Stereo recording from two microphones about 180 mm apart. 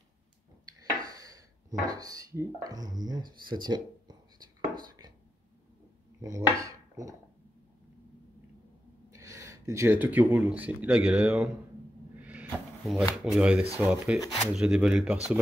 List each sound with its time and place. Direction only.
0.7 s speech: 20° right (ahead or behind)
4.7 s a sound: 20° right (ahead or behind)
6.2 s speech: 20° right (ahead or behind)
9.1 s speech: 15° right (ahead or behind)
12.2 s a sound: 10° right (ahead or behind)
13.2 s speech: 5° right (ahead or behind)